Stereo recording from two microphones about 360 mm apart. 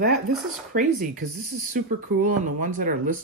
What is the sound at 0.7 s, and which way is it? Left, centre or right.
Speech, right.